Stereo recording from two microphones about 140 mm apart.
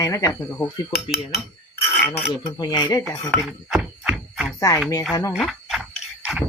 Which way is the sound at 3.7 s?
5° right (ahead or behind).